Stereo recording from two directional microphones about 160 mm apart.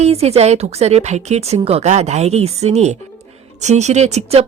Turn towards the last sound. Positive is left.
turn(degrees=-40)  # may be behind; listen again after turning